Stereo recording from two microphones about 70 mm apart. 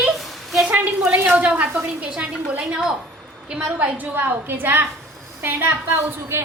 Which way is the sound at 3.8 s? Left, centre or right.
Right.